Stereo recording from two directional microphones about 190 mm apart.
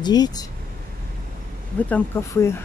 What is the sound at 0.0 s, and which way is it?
Speech, 20° left (ahead or behind).